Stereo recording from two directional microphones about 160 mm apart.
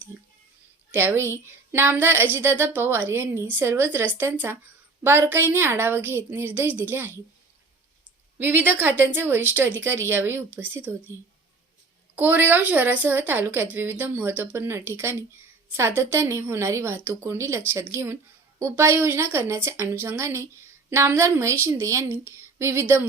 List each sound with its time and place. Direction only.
0.1 s a sound: 10° right (ahead or behind)
0.9 s speech: 15° right (ahead or behind)
8.4 s speech: 15° right (ahead or behind)
12.1 s speech: 10° right (ahead or behind)